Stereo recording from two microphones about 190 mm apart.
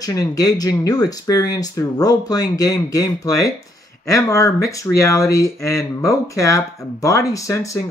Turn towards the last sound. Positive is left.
turn(degrees=15)  # may be behind; listen again after turning